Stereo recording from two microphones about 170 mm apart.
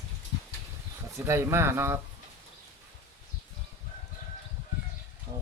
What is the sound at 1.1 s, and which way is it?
Speech, 15° right (ahead or behind).